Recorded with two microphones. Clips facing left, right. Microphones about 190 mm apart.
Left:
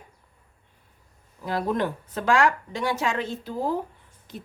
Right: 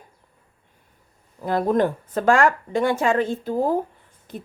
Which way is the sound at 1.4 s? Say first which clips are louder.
Right 6 dB; 50° right (ahead or behind).